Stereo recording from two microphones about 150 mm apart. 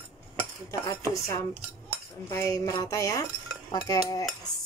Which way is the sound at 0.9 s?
20° left (ahead or behind).